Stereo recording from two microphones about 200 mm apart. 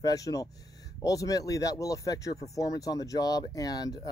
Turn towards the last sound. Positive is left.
turn(degrees=20)  # may be behind; listen again after turning